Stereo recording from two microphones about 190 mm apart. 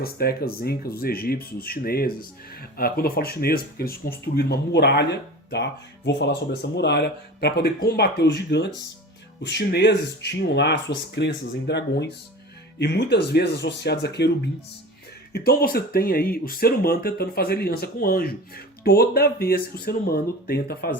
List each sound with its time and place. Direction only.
0.0 s speech: 55° left (ahead or behind)